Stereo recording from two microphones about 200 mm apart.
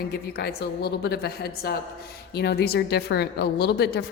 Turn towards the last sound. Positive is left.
turn(degrees=55)  # may be behind; listen again after turning